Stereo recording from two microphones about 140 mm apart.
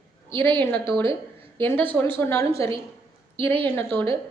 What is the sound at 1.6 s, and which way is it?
A woman's voice, 15° left (ahead or behind).